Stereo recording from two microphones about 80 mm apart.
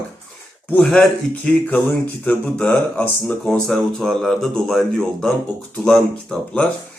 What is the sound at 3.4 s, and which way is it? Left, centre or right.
Speech, centre.